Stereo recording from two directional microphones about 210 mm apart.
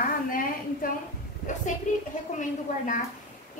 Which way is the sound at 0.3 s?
40° left (ahead or behind).